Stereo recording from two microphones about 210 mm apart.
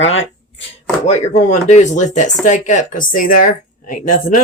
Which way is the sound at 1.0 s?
30° left (ahead or behind).